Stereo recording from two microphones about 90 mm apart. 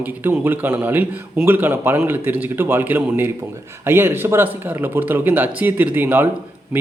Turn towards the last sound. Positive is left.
turn(degrees=-20)  # may be behind; listen again after turning